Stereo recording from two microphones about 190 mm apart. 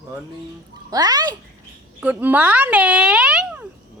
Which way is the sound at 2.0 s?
10° right (ahead or behind).